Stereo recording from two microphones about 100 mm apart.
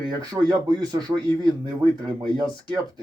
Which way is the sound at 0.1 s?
45° right (ahead or behind).